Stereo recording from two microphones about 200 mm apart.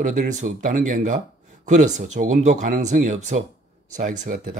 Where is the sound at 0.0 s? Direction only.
40° right (ahead or behind).